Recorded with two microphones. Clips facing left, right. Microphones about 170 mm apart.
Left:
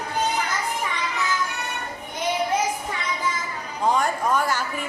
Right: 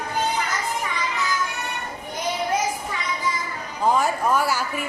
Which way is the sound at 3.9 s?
5° right (ahead or behind).